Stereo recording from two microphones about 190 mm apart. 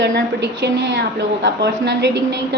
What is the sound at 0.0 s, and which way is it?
A woman's voice, 65° right (ahead or behind).